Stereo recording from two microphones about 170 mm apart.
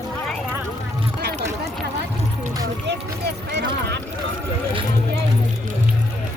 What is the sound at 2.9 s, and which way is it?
Run, 85° right.